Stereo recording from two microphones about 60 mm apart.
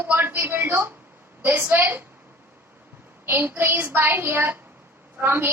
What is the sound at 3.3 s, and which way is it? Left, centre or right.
A woman's voice, right.